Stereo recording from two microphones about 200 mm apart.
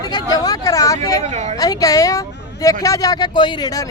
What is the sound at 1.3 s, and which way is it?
Speech, 35° right (ahead or behind).